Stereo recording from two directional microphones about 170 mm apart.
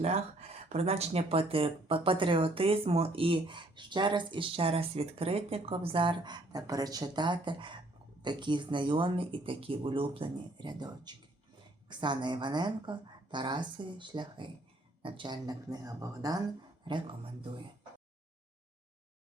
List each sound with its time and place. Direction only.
0.0 s speech: 40° right (ahead or behind)